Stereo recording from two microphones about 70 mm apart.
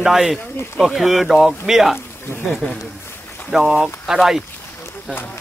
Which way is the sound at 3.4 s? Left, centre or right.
Centre.